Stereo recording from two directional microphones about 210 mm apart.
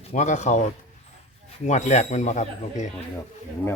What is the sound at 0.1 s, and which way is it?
Speech, 35° left (ahead or behind).